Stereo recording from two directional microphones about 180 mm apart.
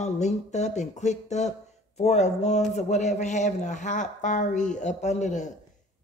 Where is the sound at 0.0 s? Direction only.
40° left (ahead or behind).